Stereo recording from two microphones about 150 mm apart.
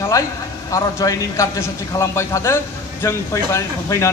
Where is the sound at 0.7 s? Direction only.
20° left (ahead or behind).